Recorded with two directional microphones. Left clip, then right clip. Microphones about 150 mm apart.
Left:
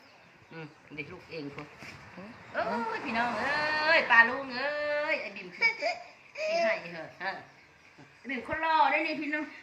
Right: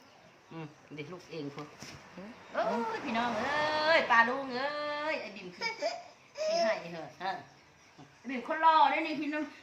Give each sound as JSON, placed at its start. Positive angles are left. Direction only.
{"t": 0.5, "sound": "speech", "side_deg": -40}
{"t": 2.6, "sound": "a woman's voice", "side_deg": -25}
{"t": 5.5, "sound": "laughter", "side_deg": -10}
{"t": 6.6, "sound": "a woman's voice", "side_deg": -25}
{"t": 8.4, "sound": "a woman's voice", "side_deg": -25}